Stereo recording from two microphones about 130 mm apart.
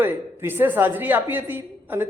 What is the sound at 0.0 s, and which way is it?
A woman's voice, 15° right (ahead or behind).